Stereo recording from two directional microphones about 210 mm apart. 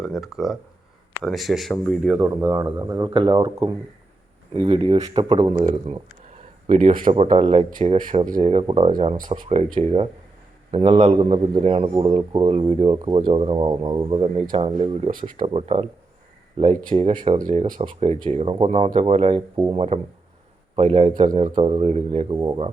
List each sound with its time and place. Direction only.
0.0 s a man's voice: centre (ahead or behind); by 19.4 s 30° right (ahead or behind)
19.5 s a man's voice: 20° right (ahead or behind)